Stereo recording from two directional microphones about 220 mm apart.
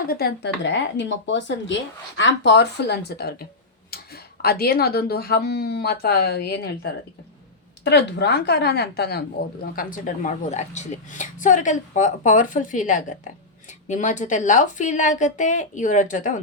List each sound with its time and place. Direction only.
0.1 s speech: 45° left (ahead or behind)
7.9 s a woman's voice: 50° left (ahead or behind)